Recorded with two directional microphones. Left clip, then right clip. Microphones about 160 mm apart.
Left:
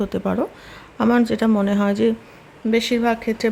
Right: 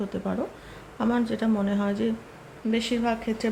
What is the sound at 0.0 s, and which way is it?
Speech, 45° left (ahead or behind).